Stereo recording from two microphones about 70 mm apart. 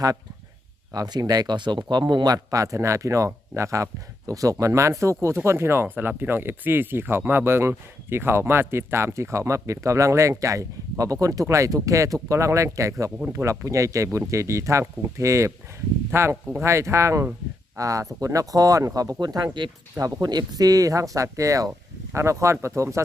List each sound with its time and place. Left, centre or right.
0.9 s speech: right
2.5 s speech: right
16.1 s speech: right